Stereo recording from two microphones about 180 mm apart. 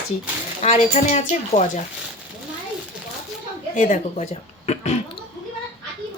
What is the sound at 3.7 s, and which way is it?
Speech, 45° left (ahead or behind).